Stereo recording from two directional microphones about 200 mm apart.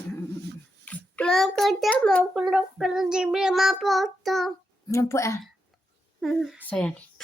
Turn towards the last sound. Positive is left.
turn(degrees=5)  # may be behind; listen again after turning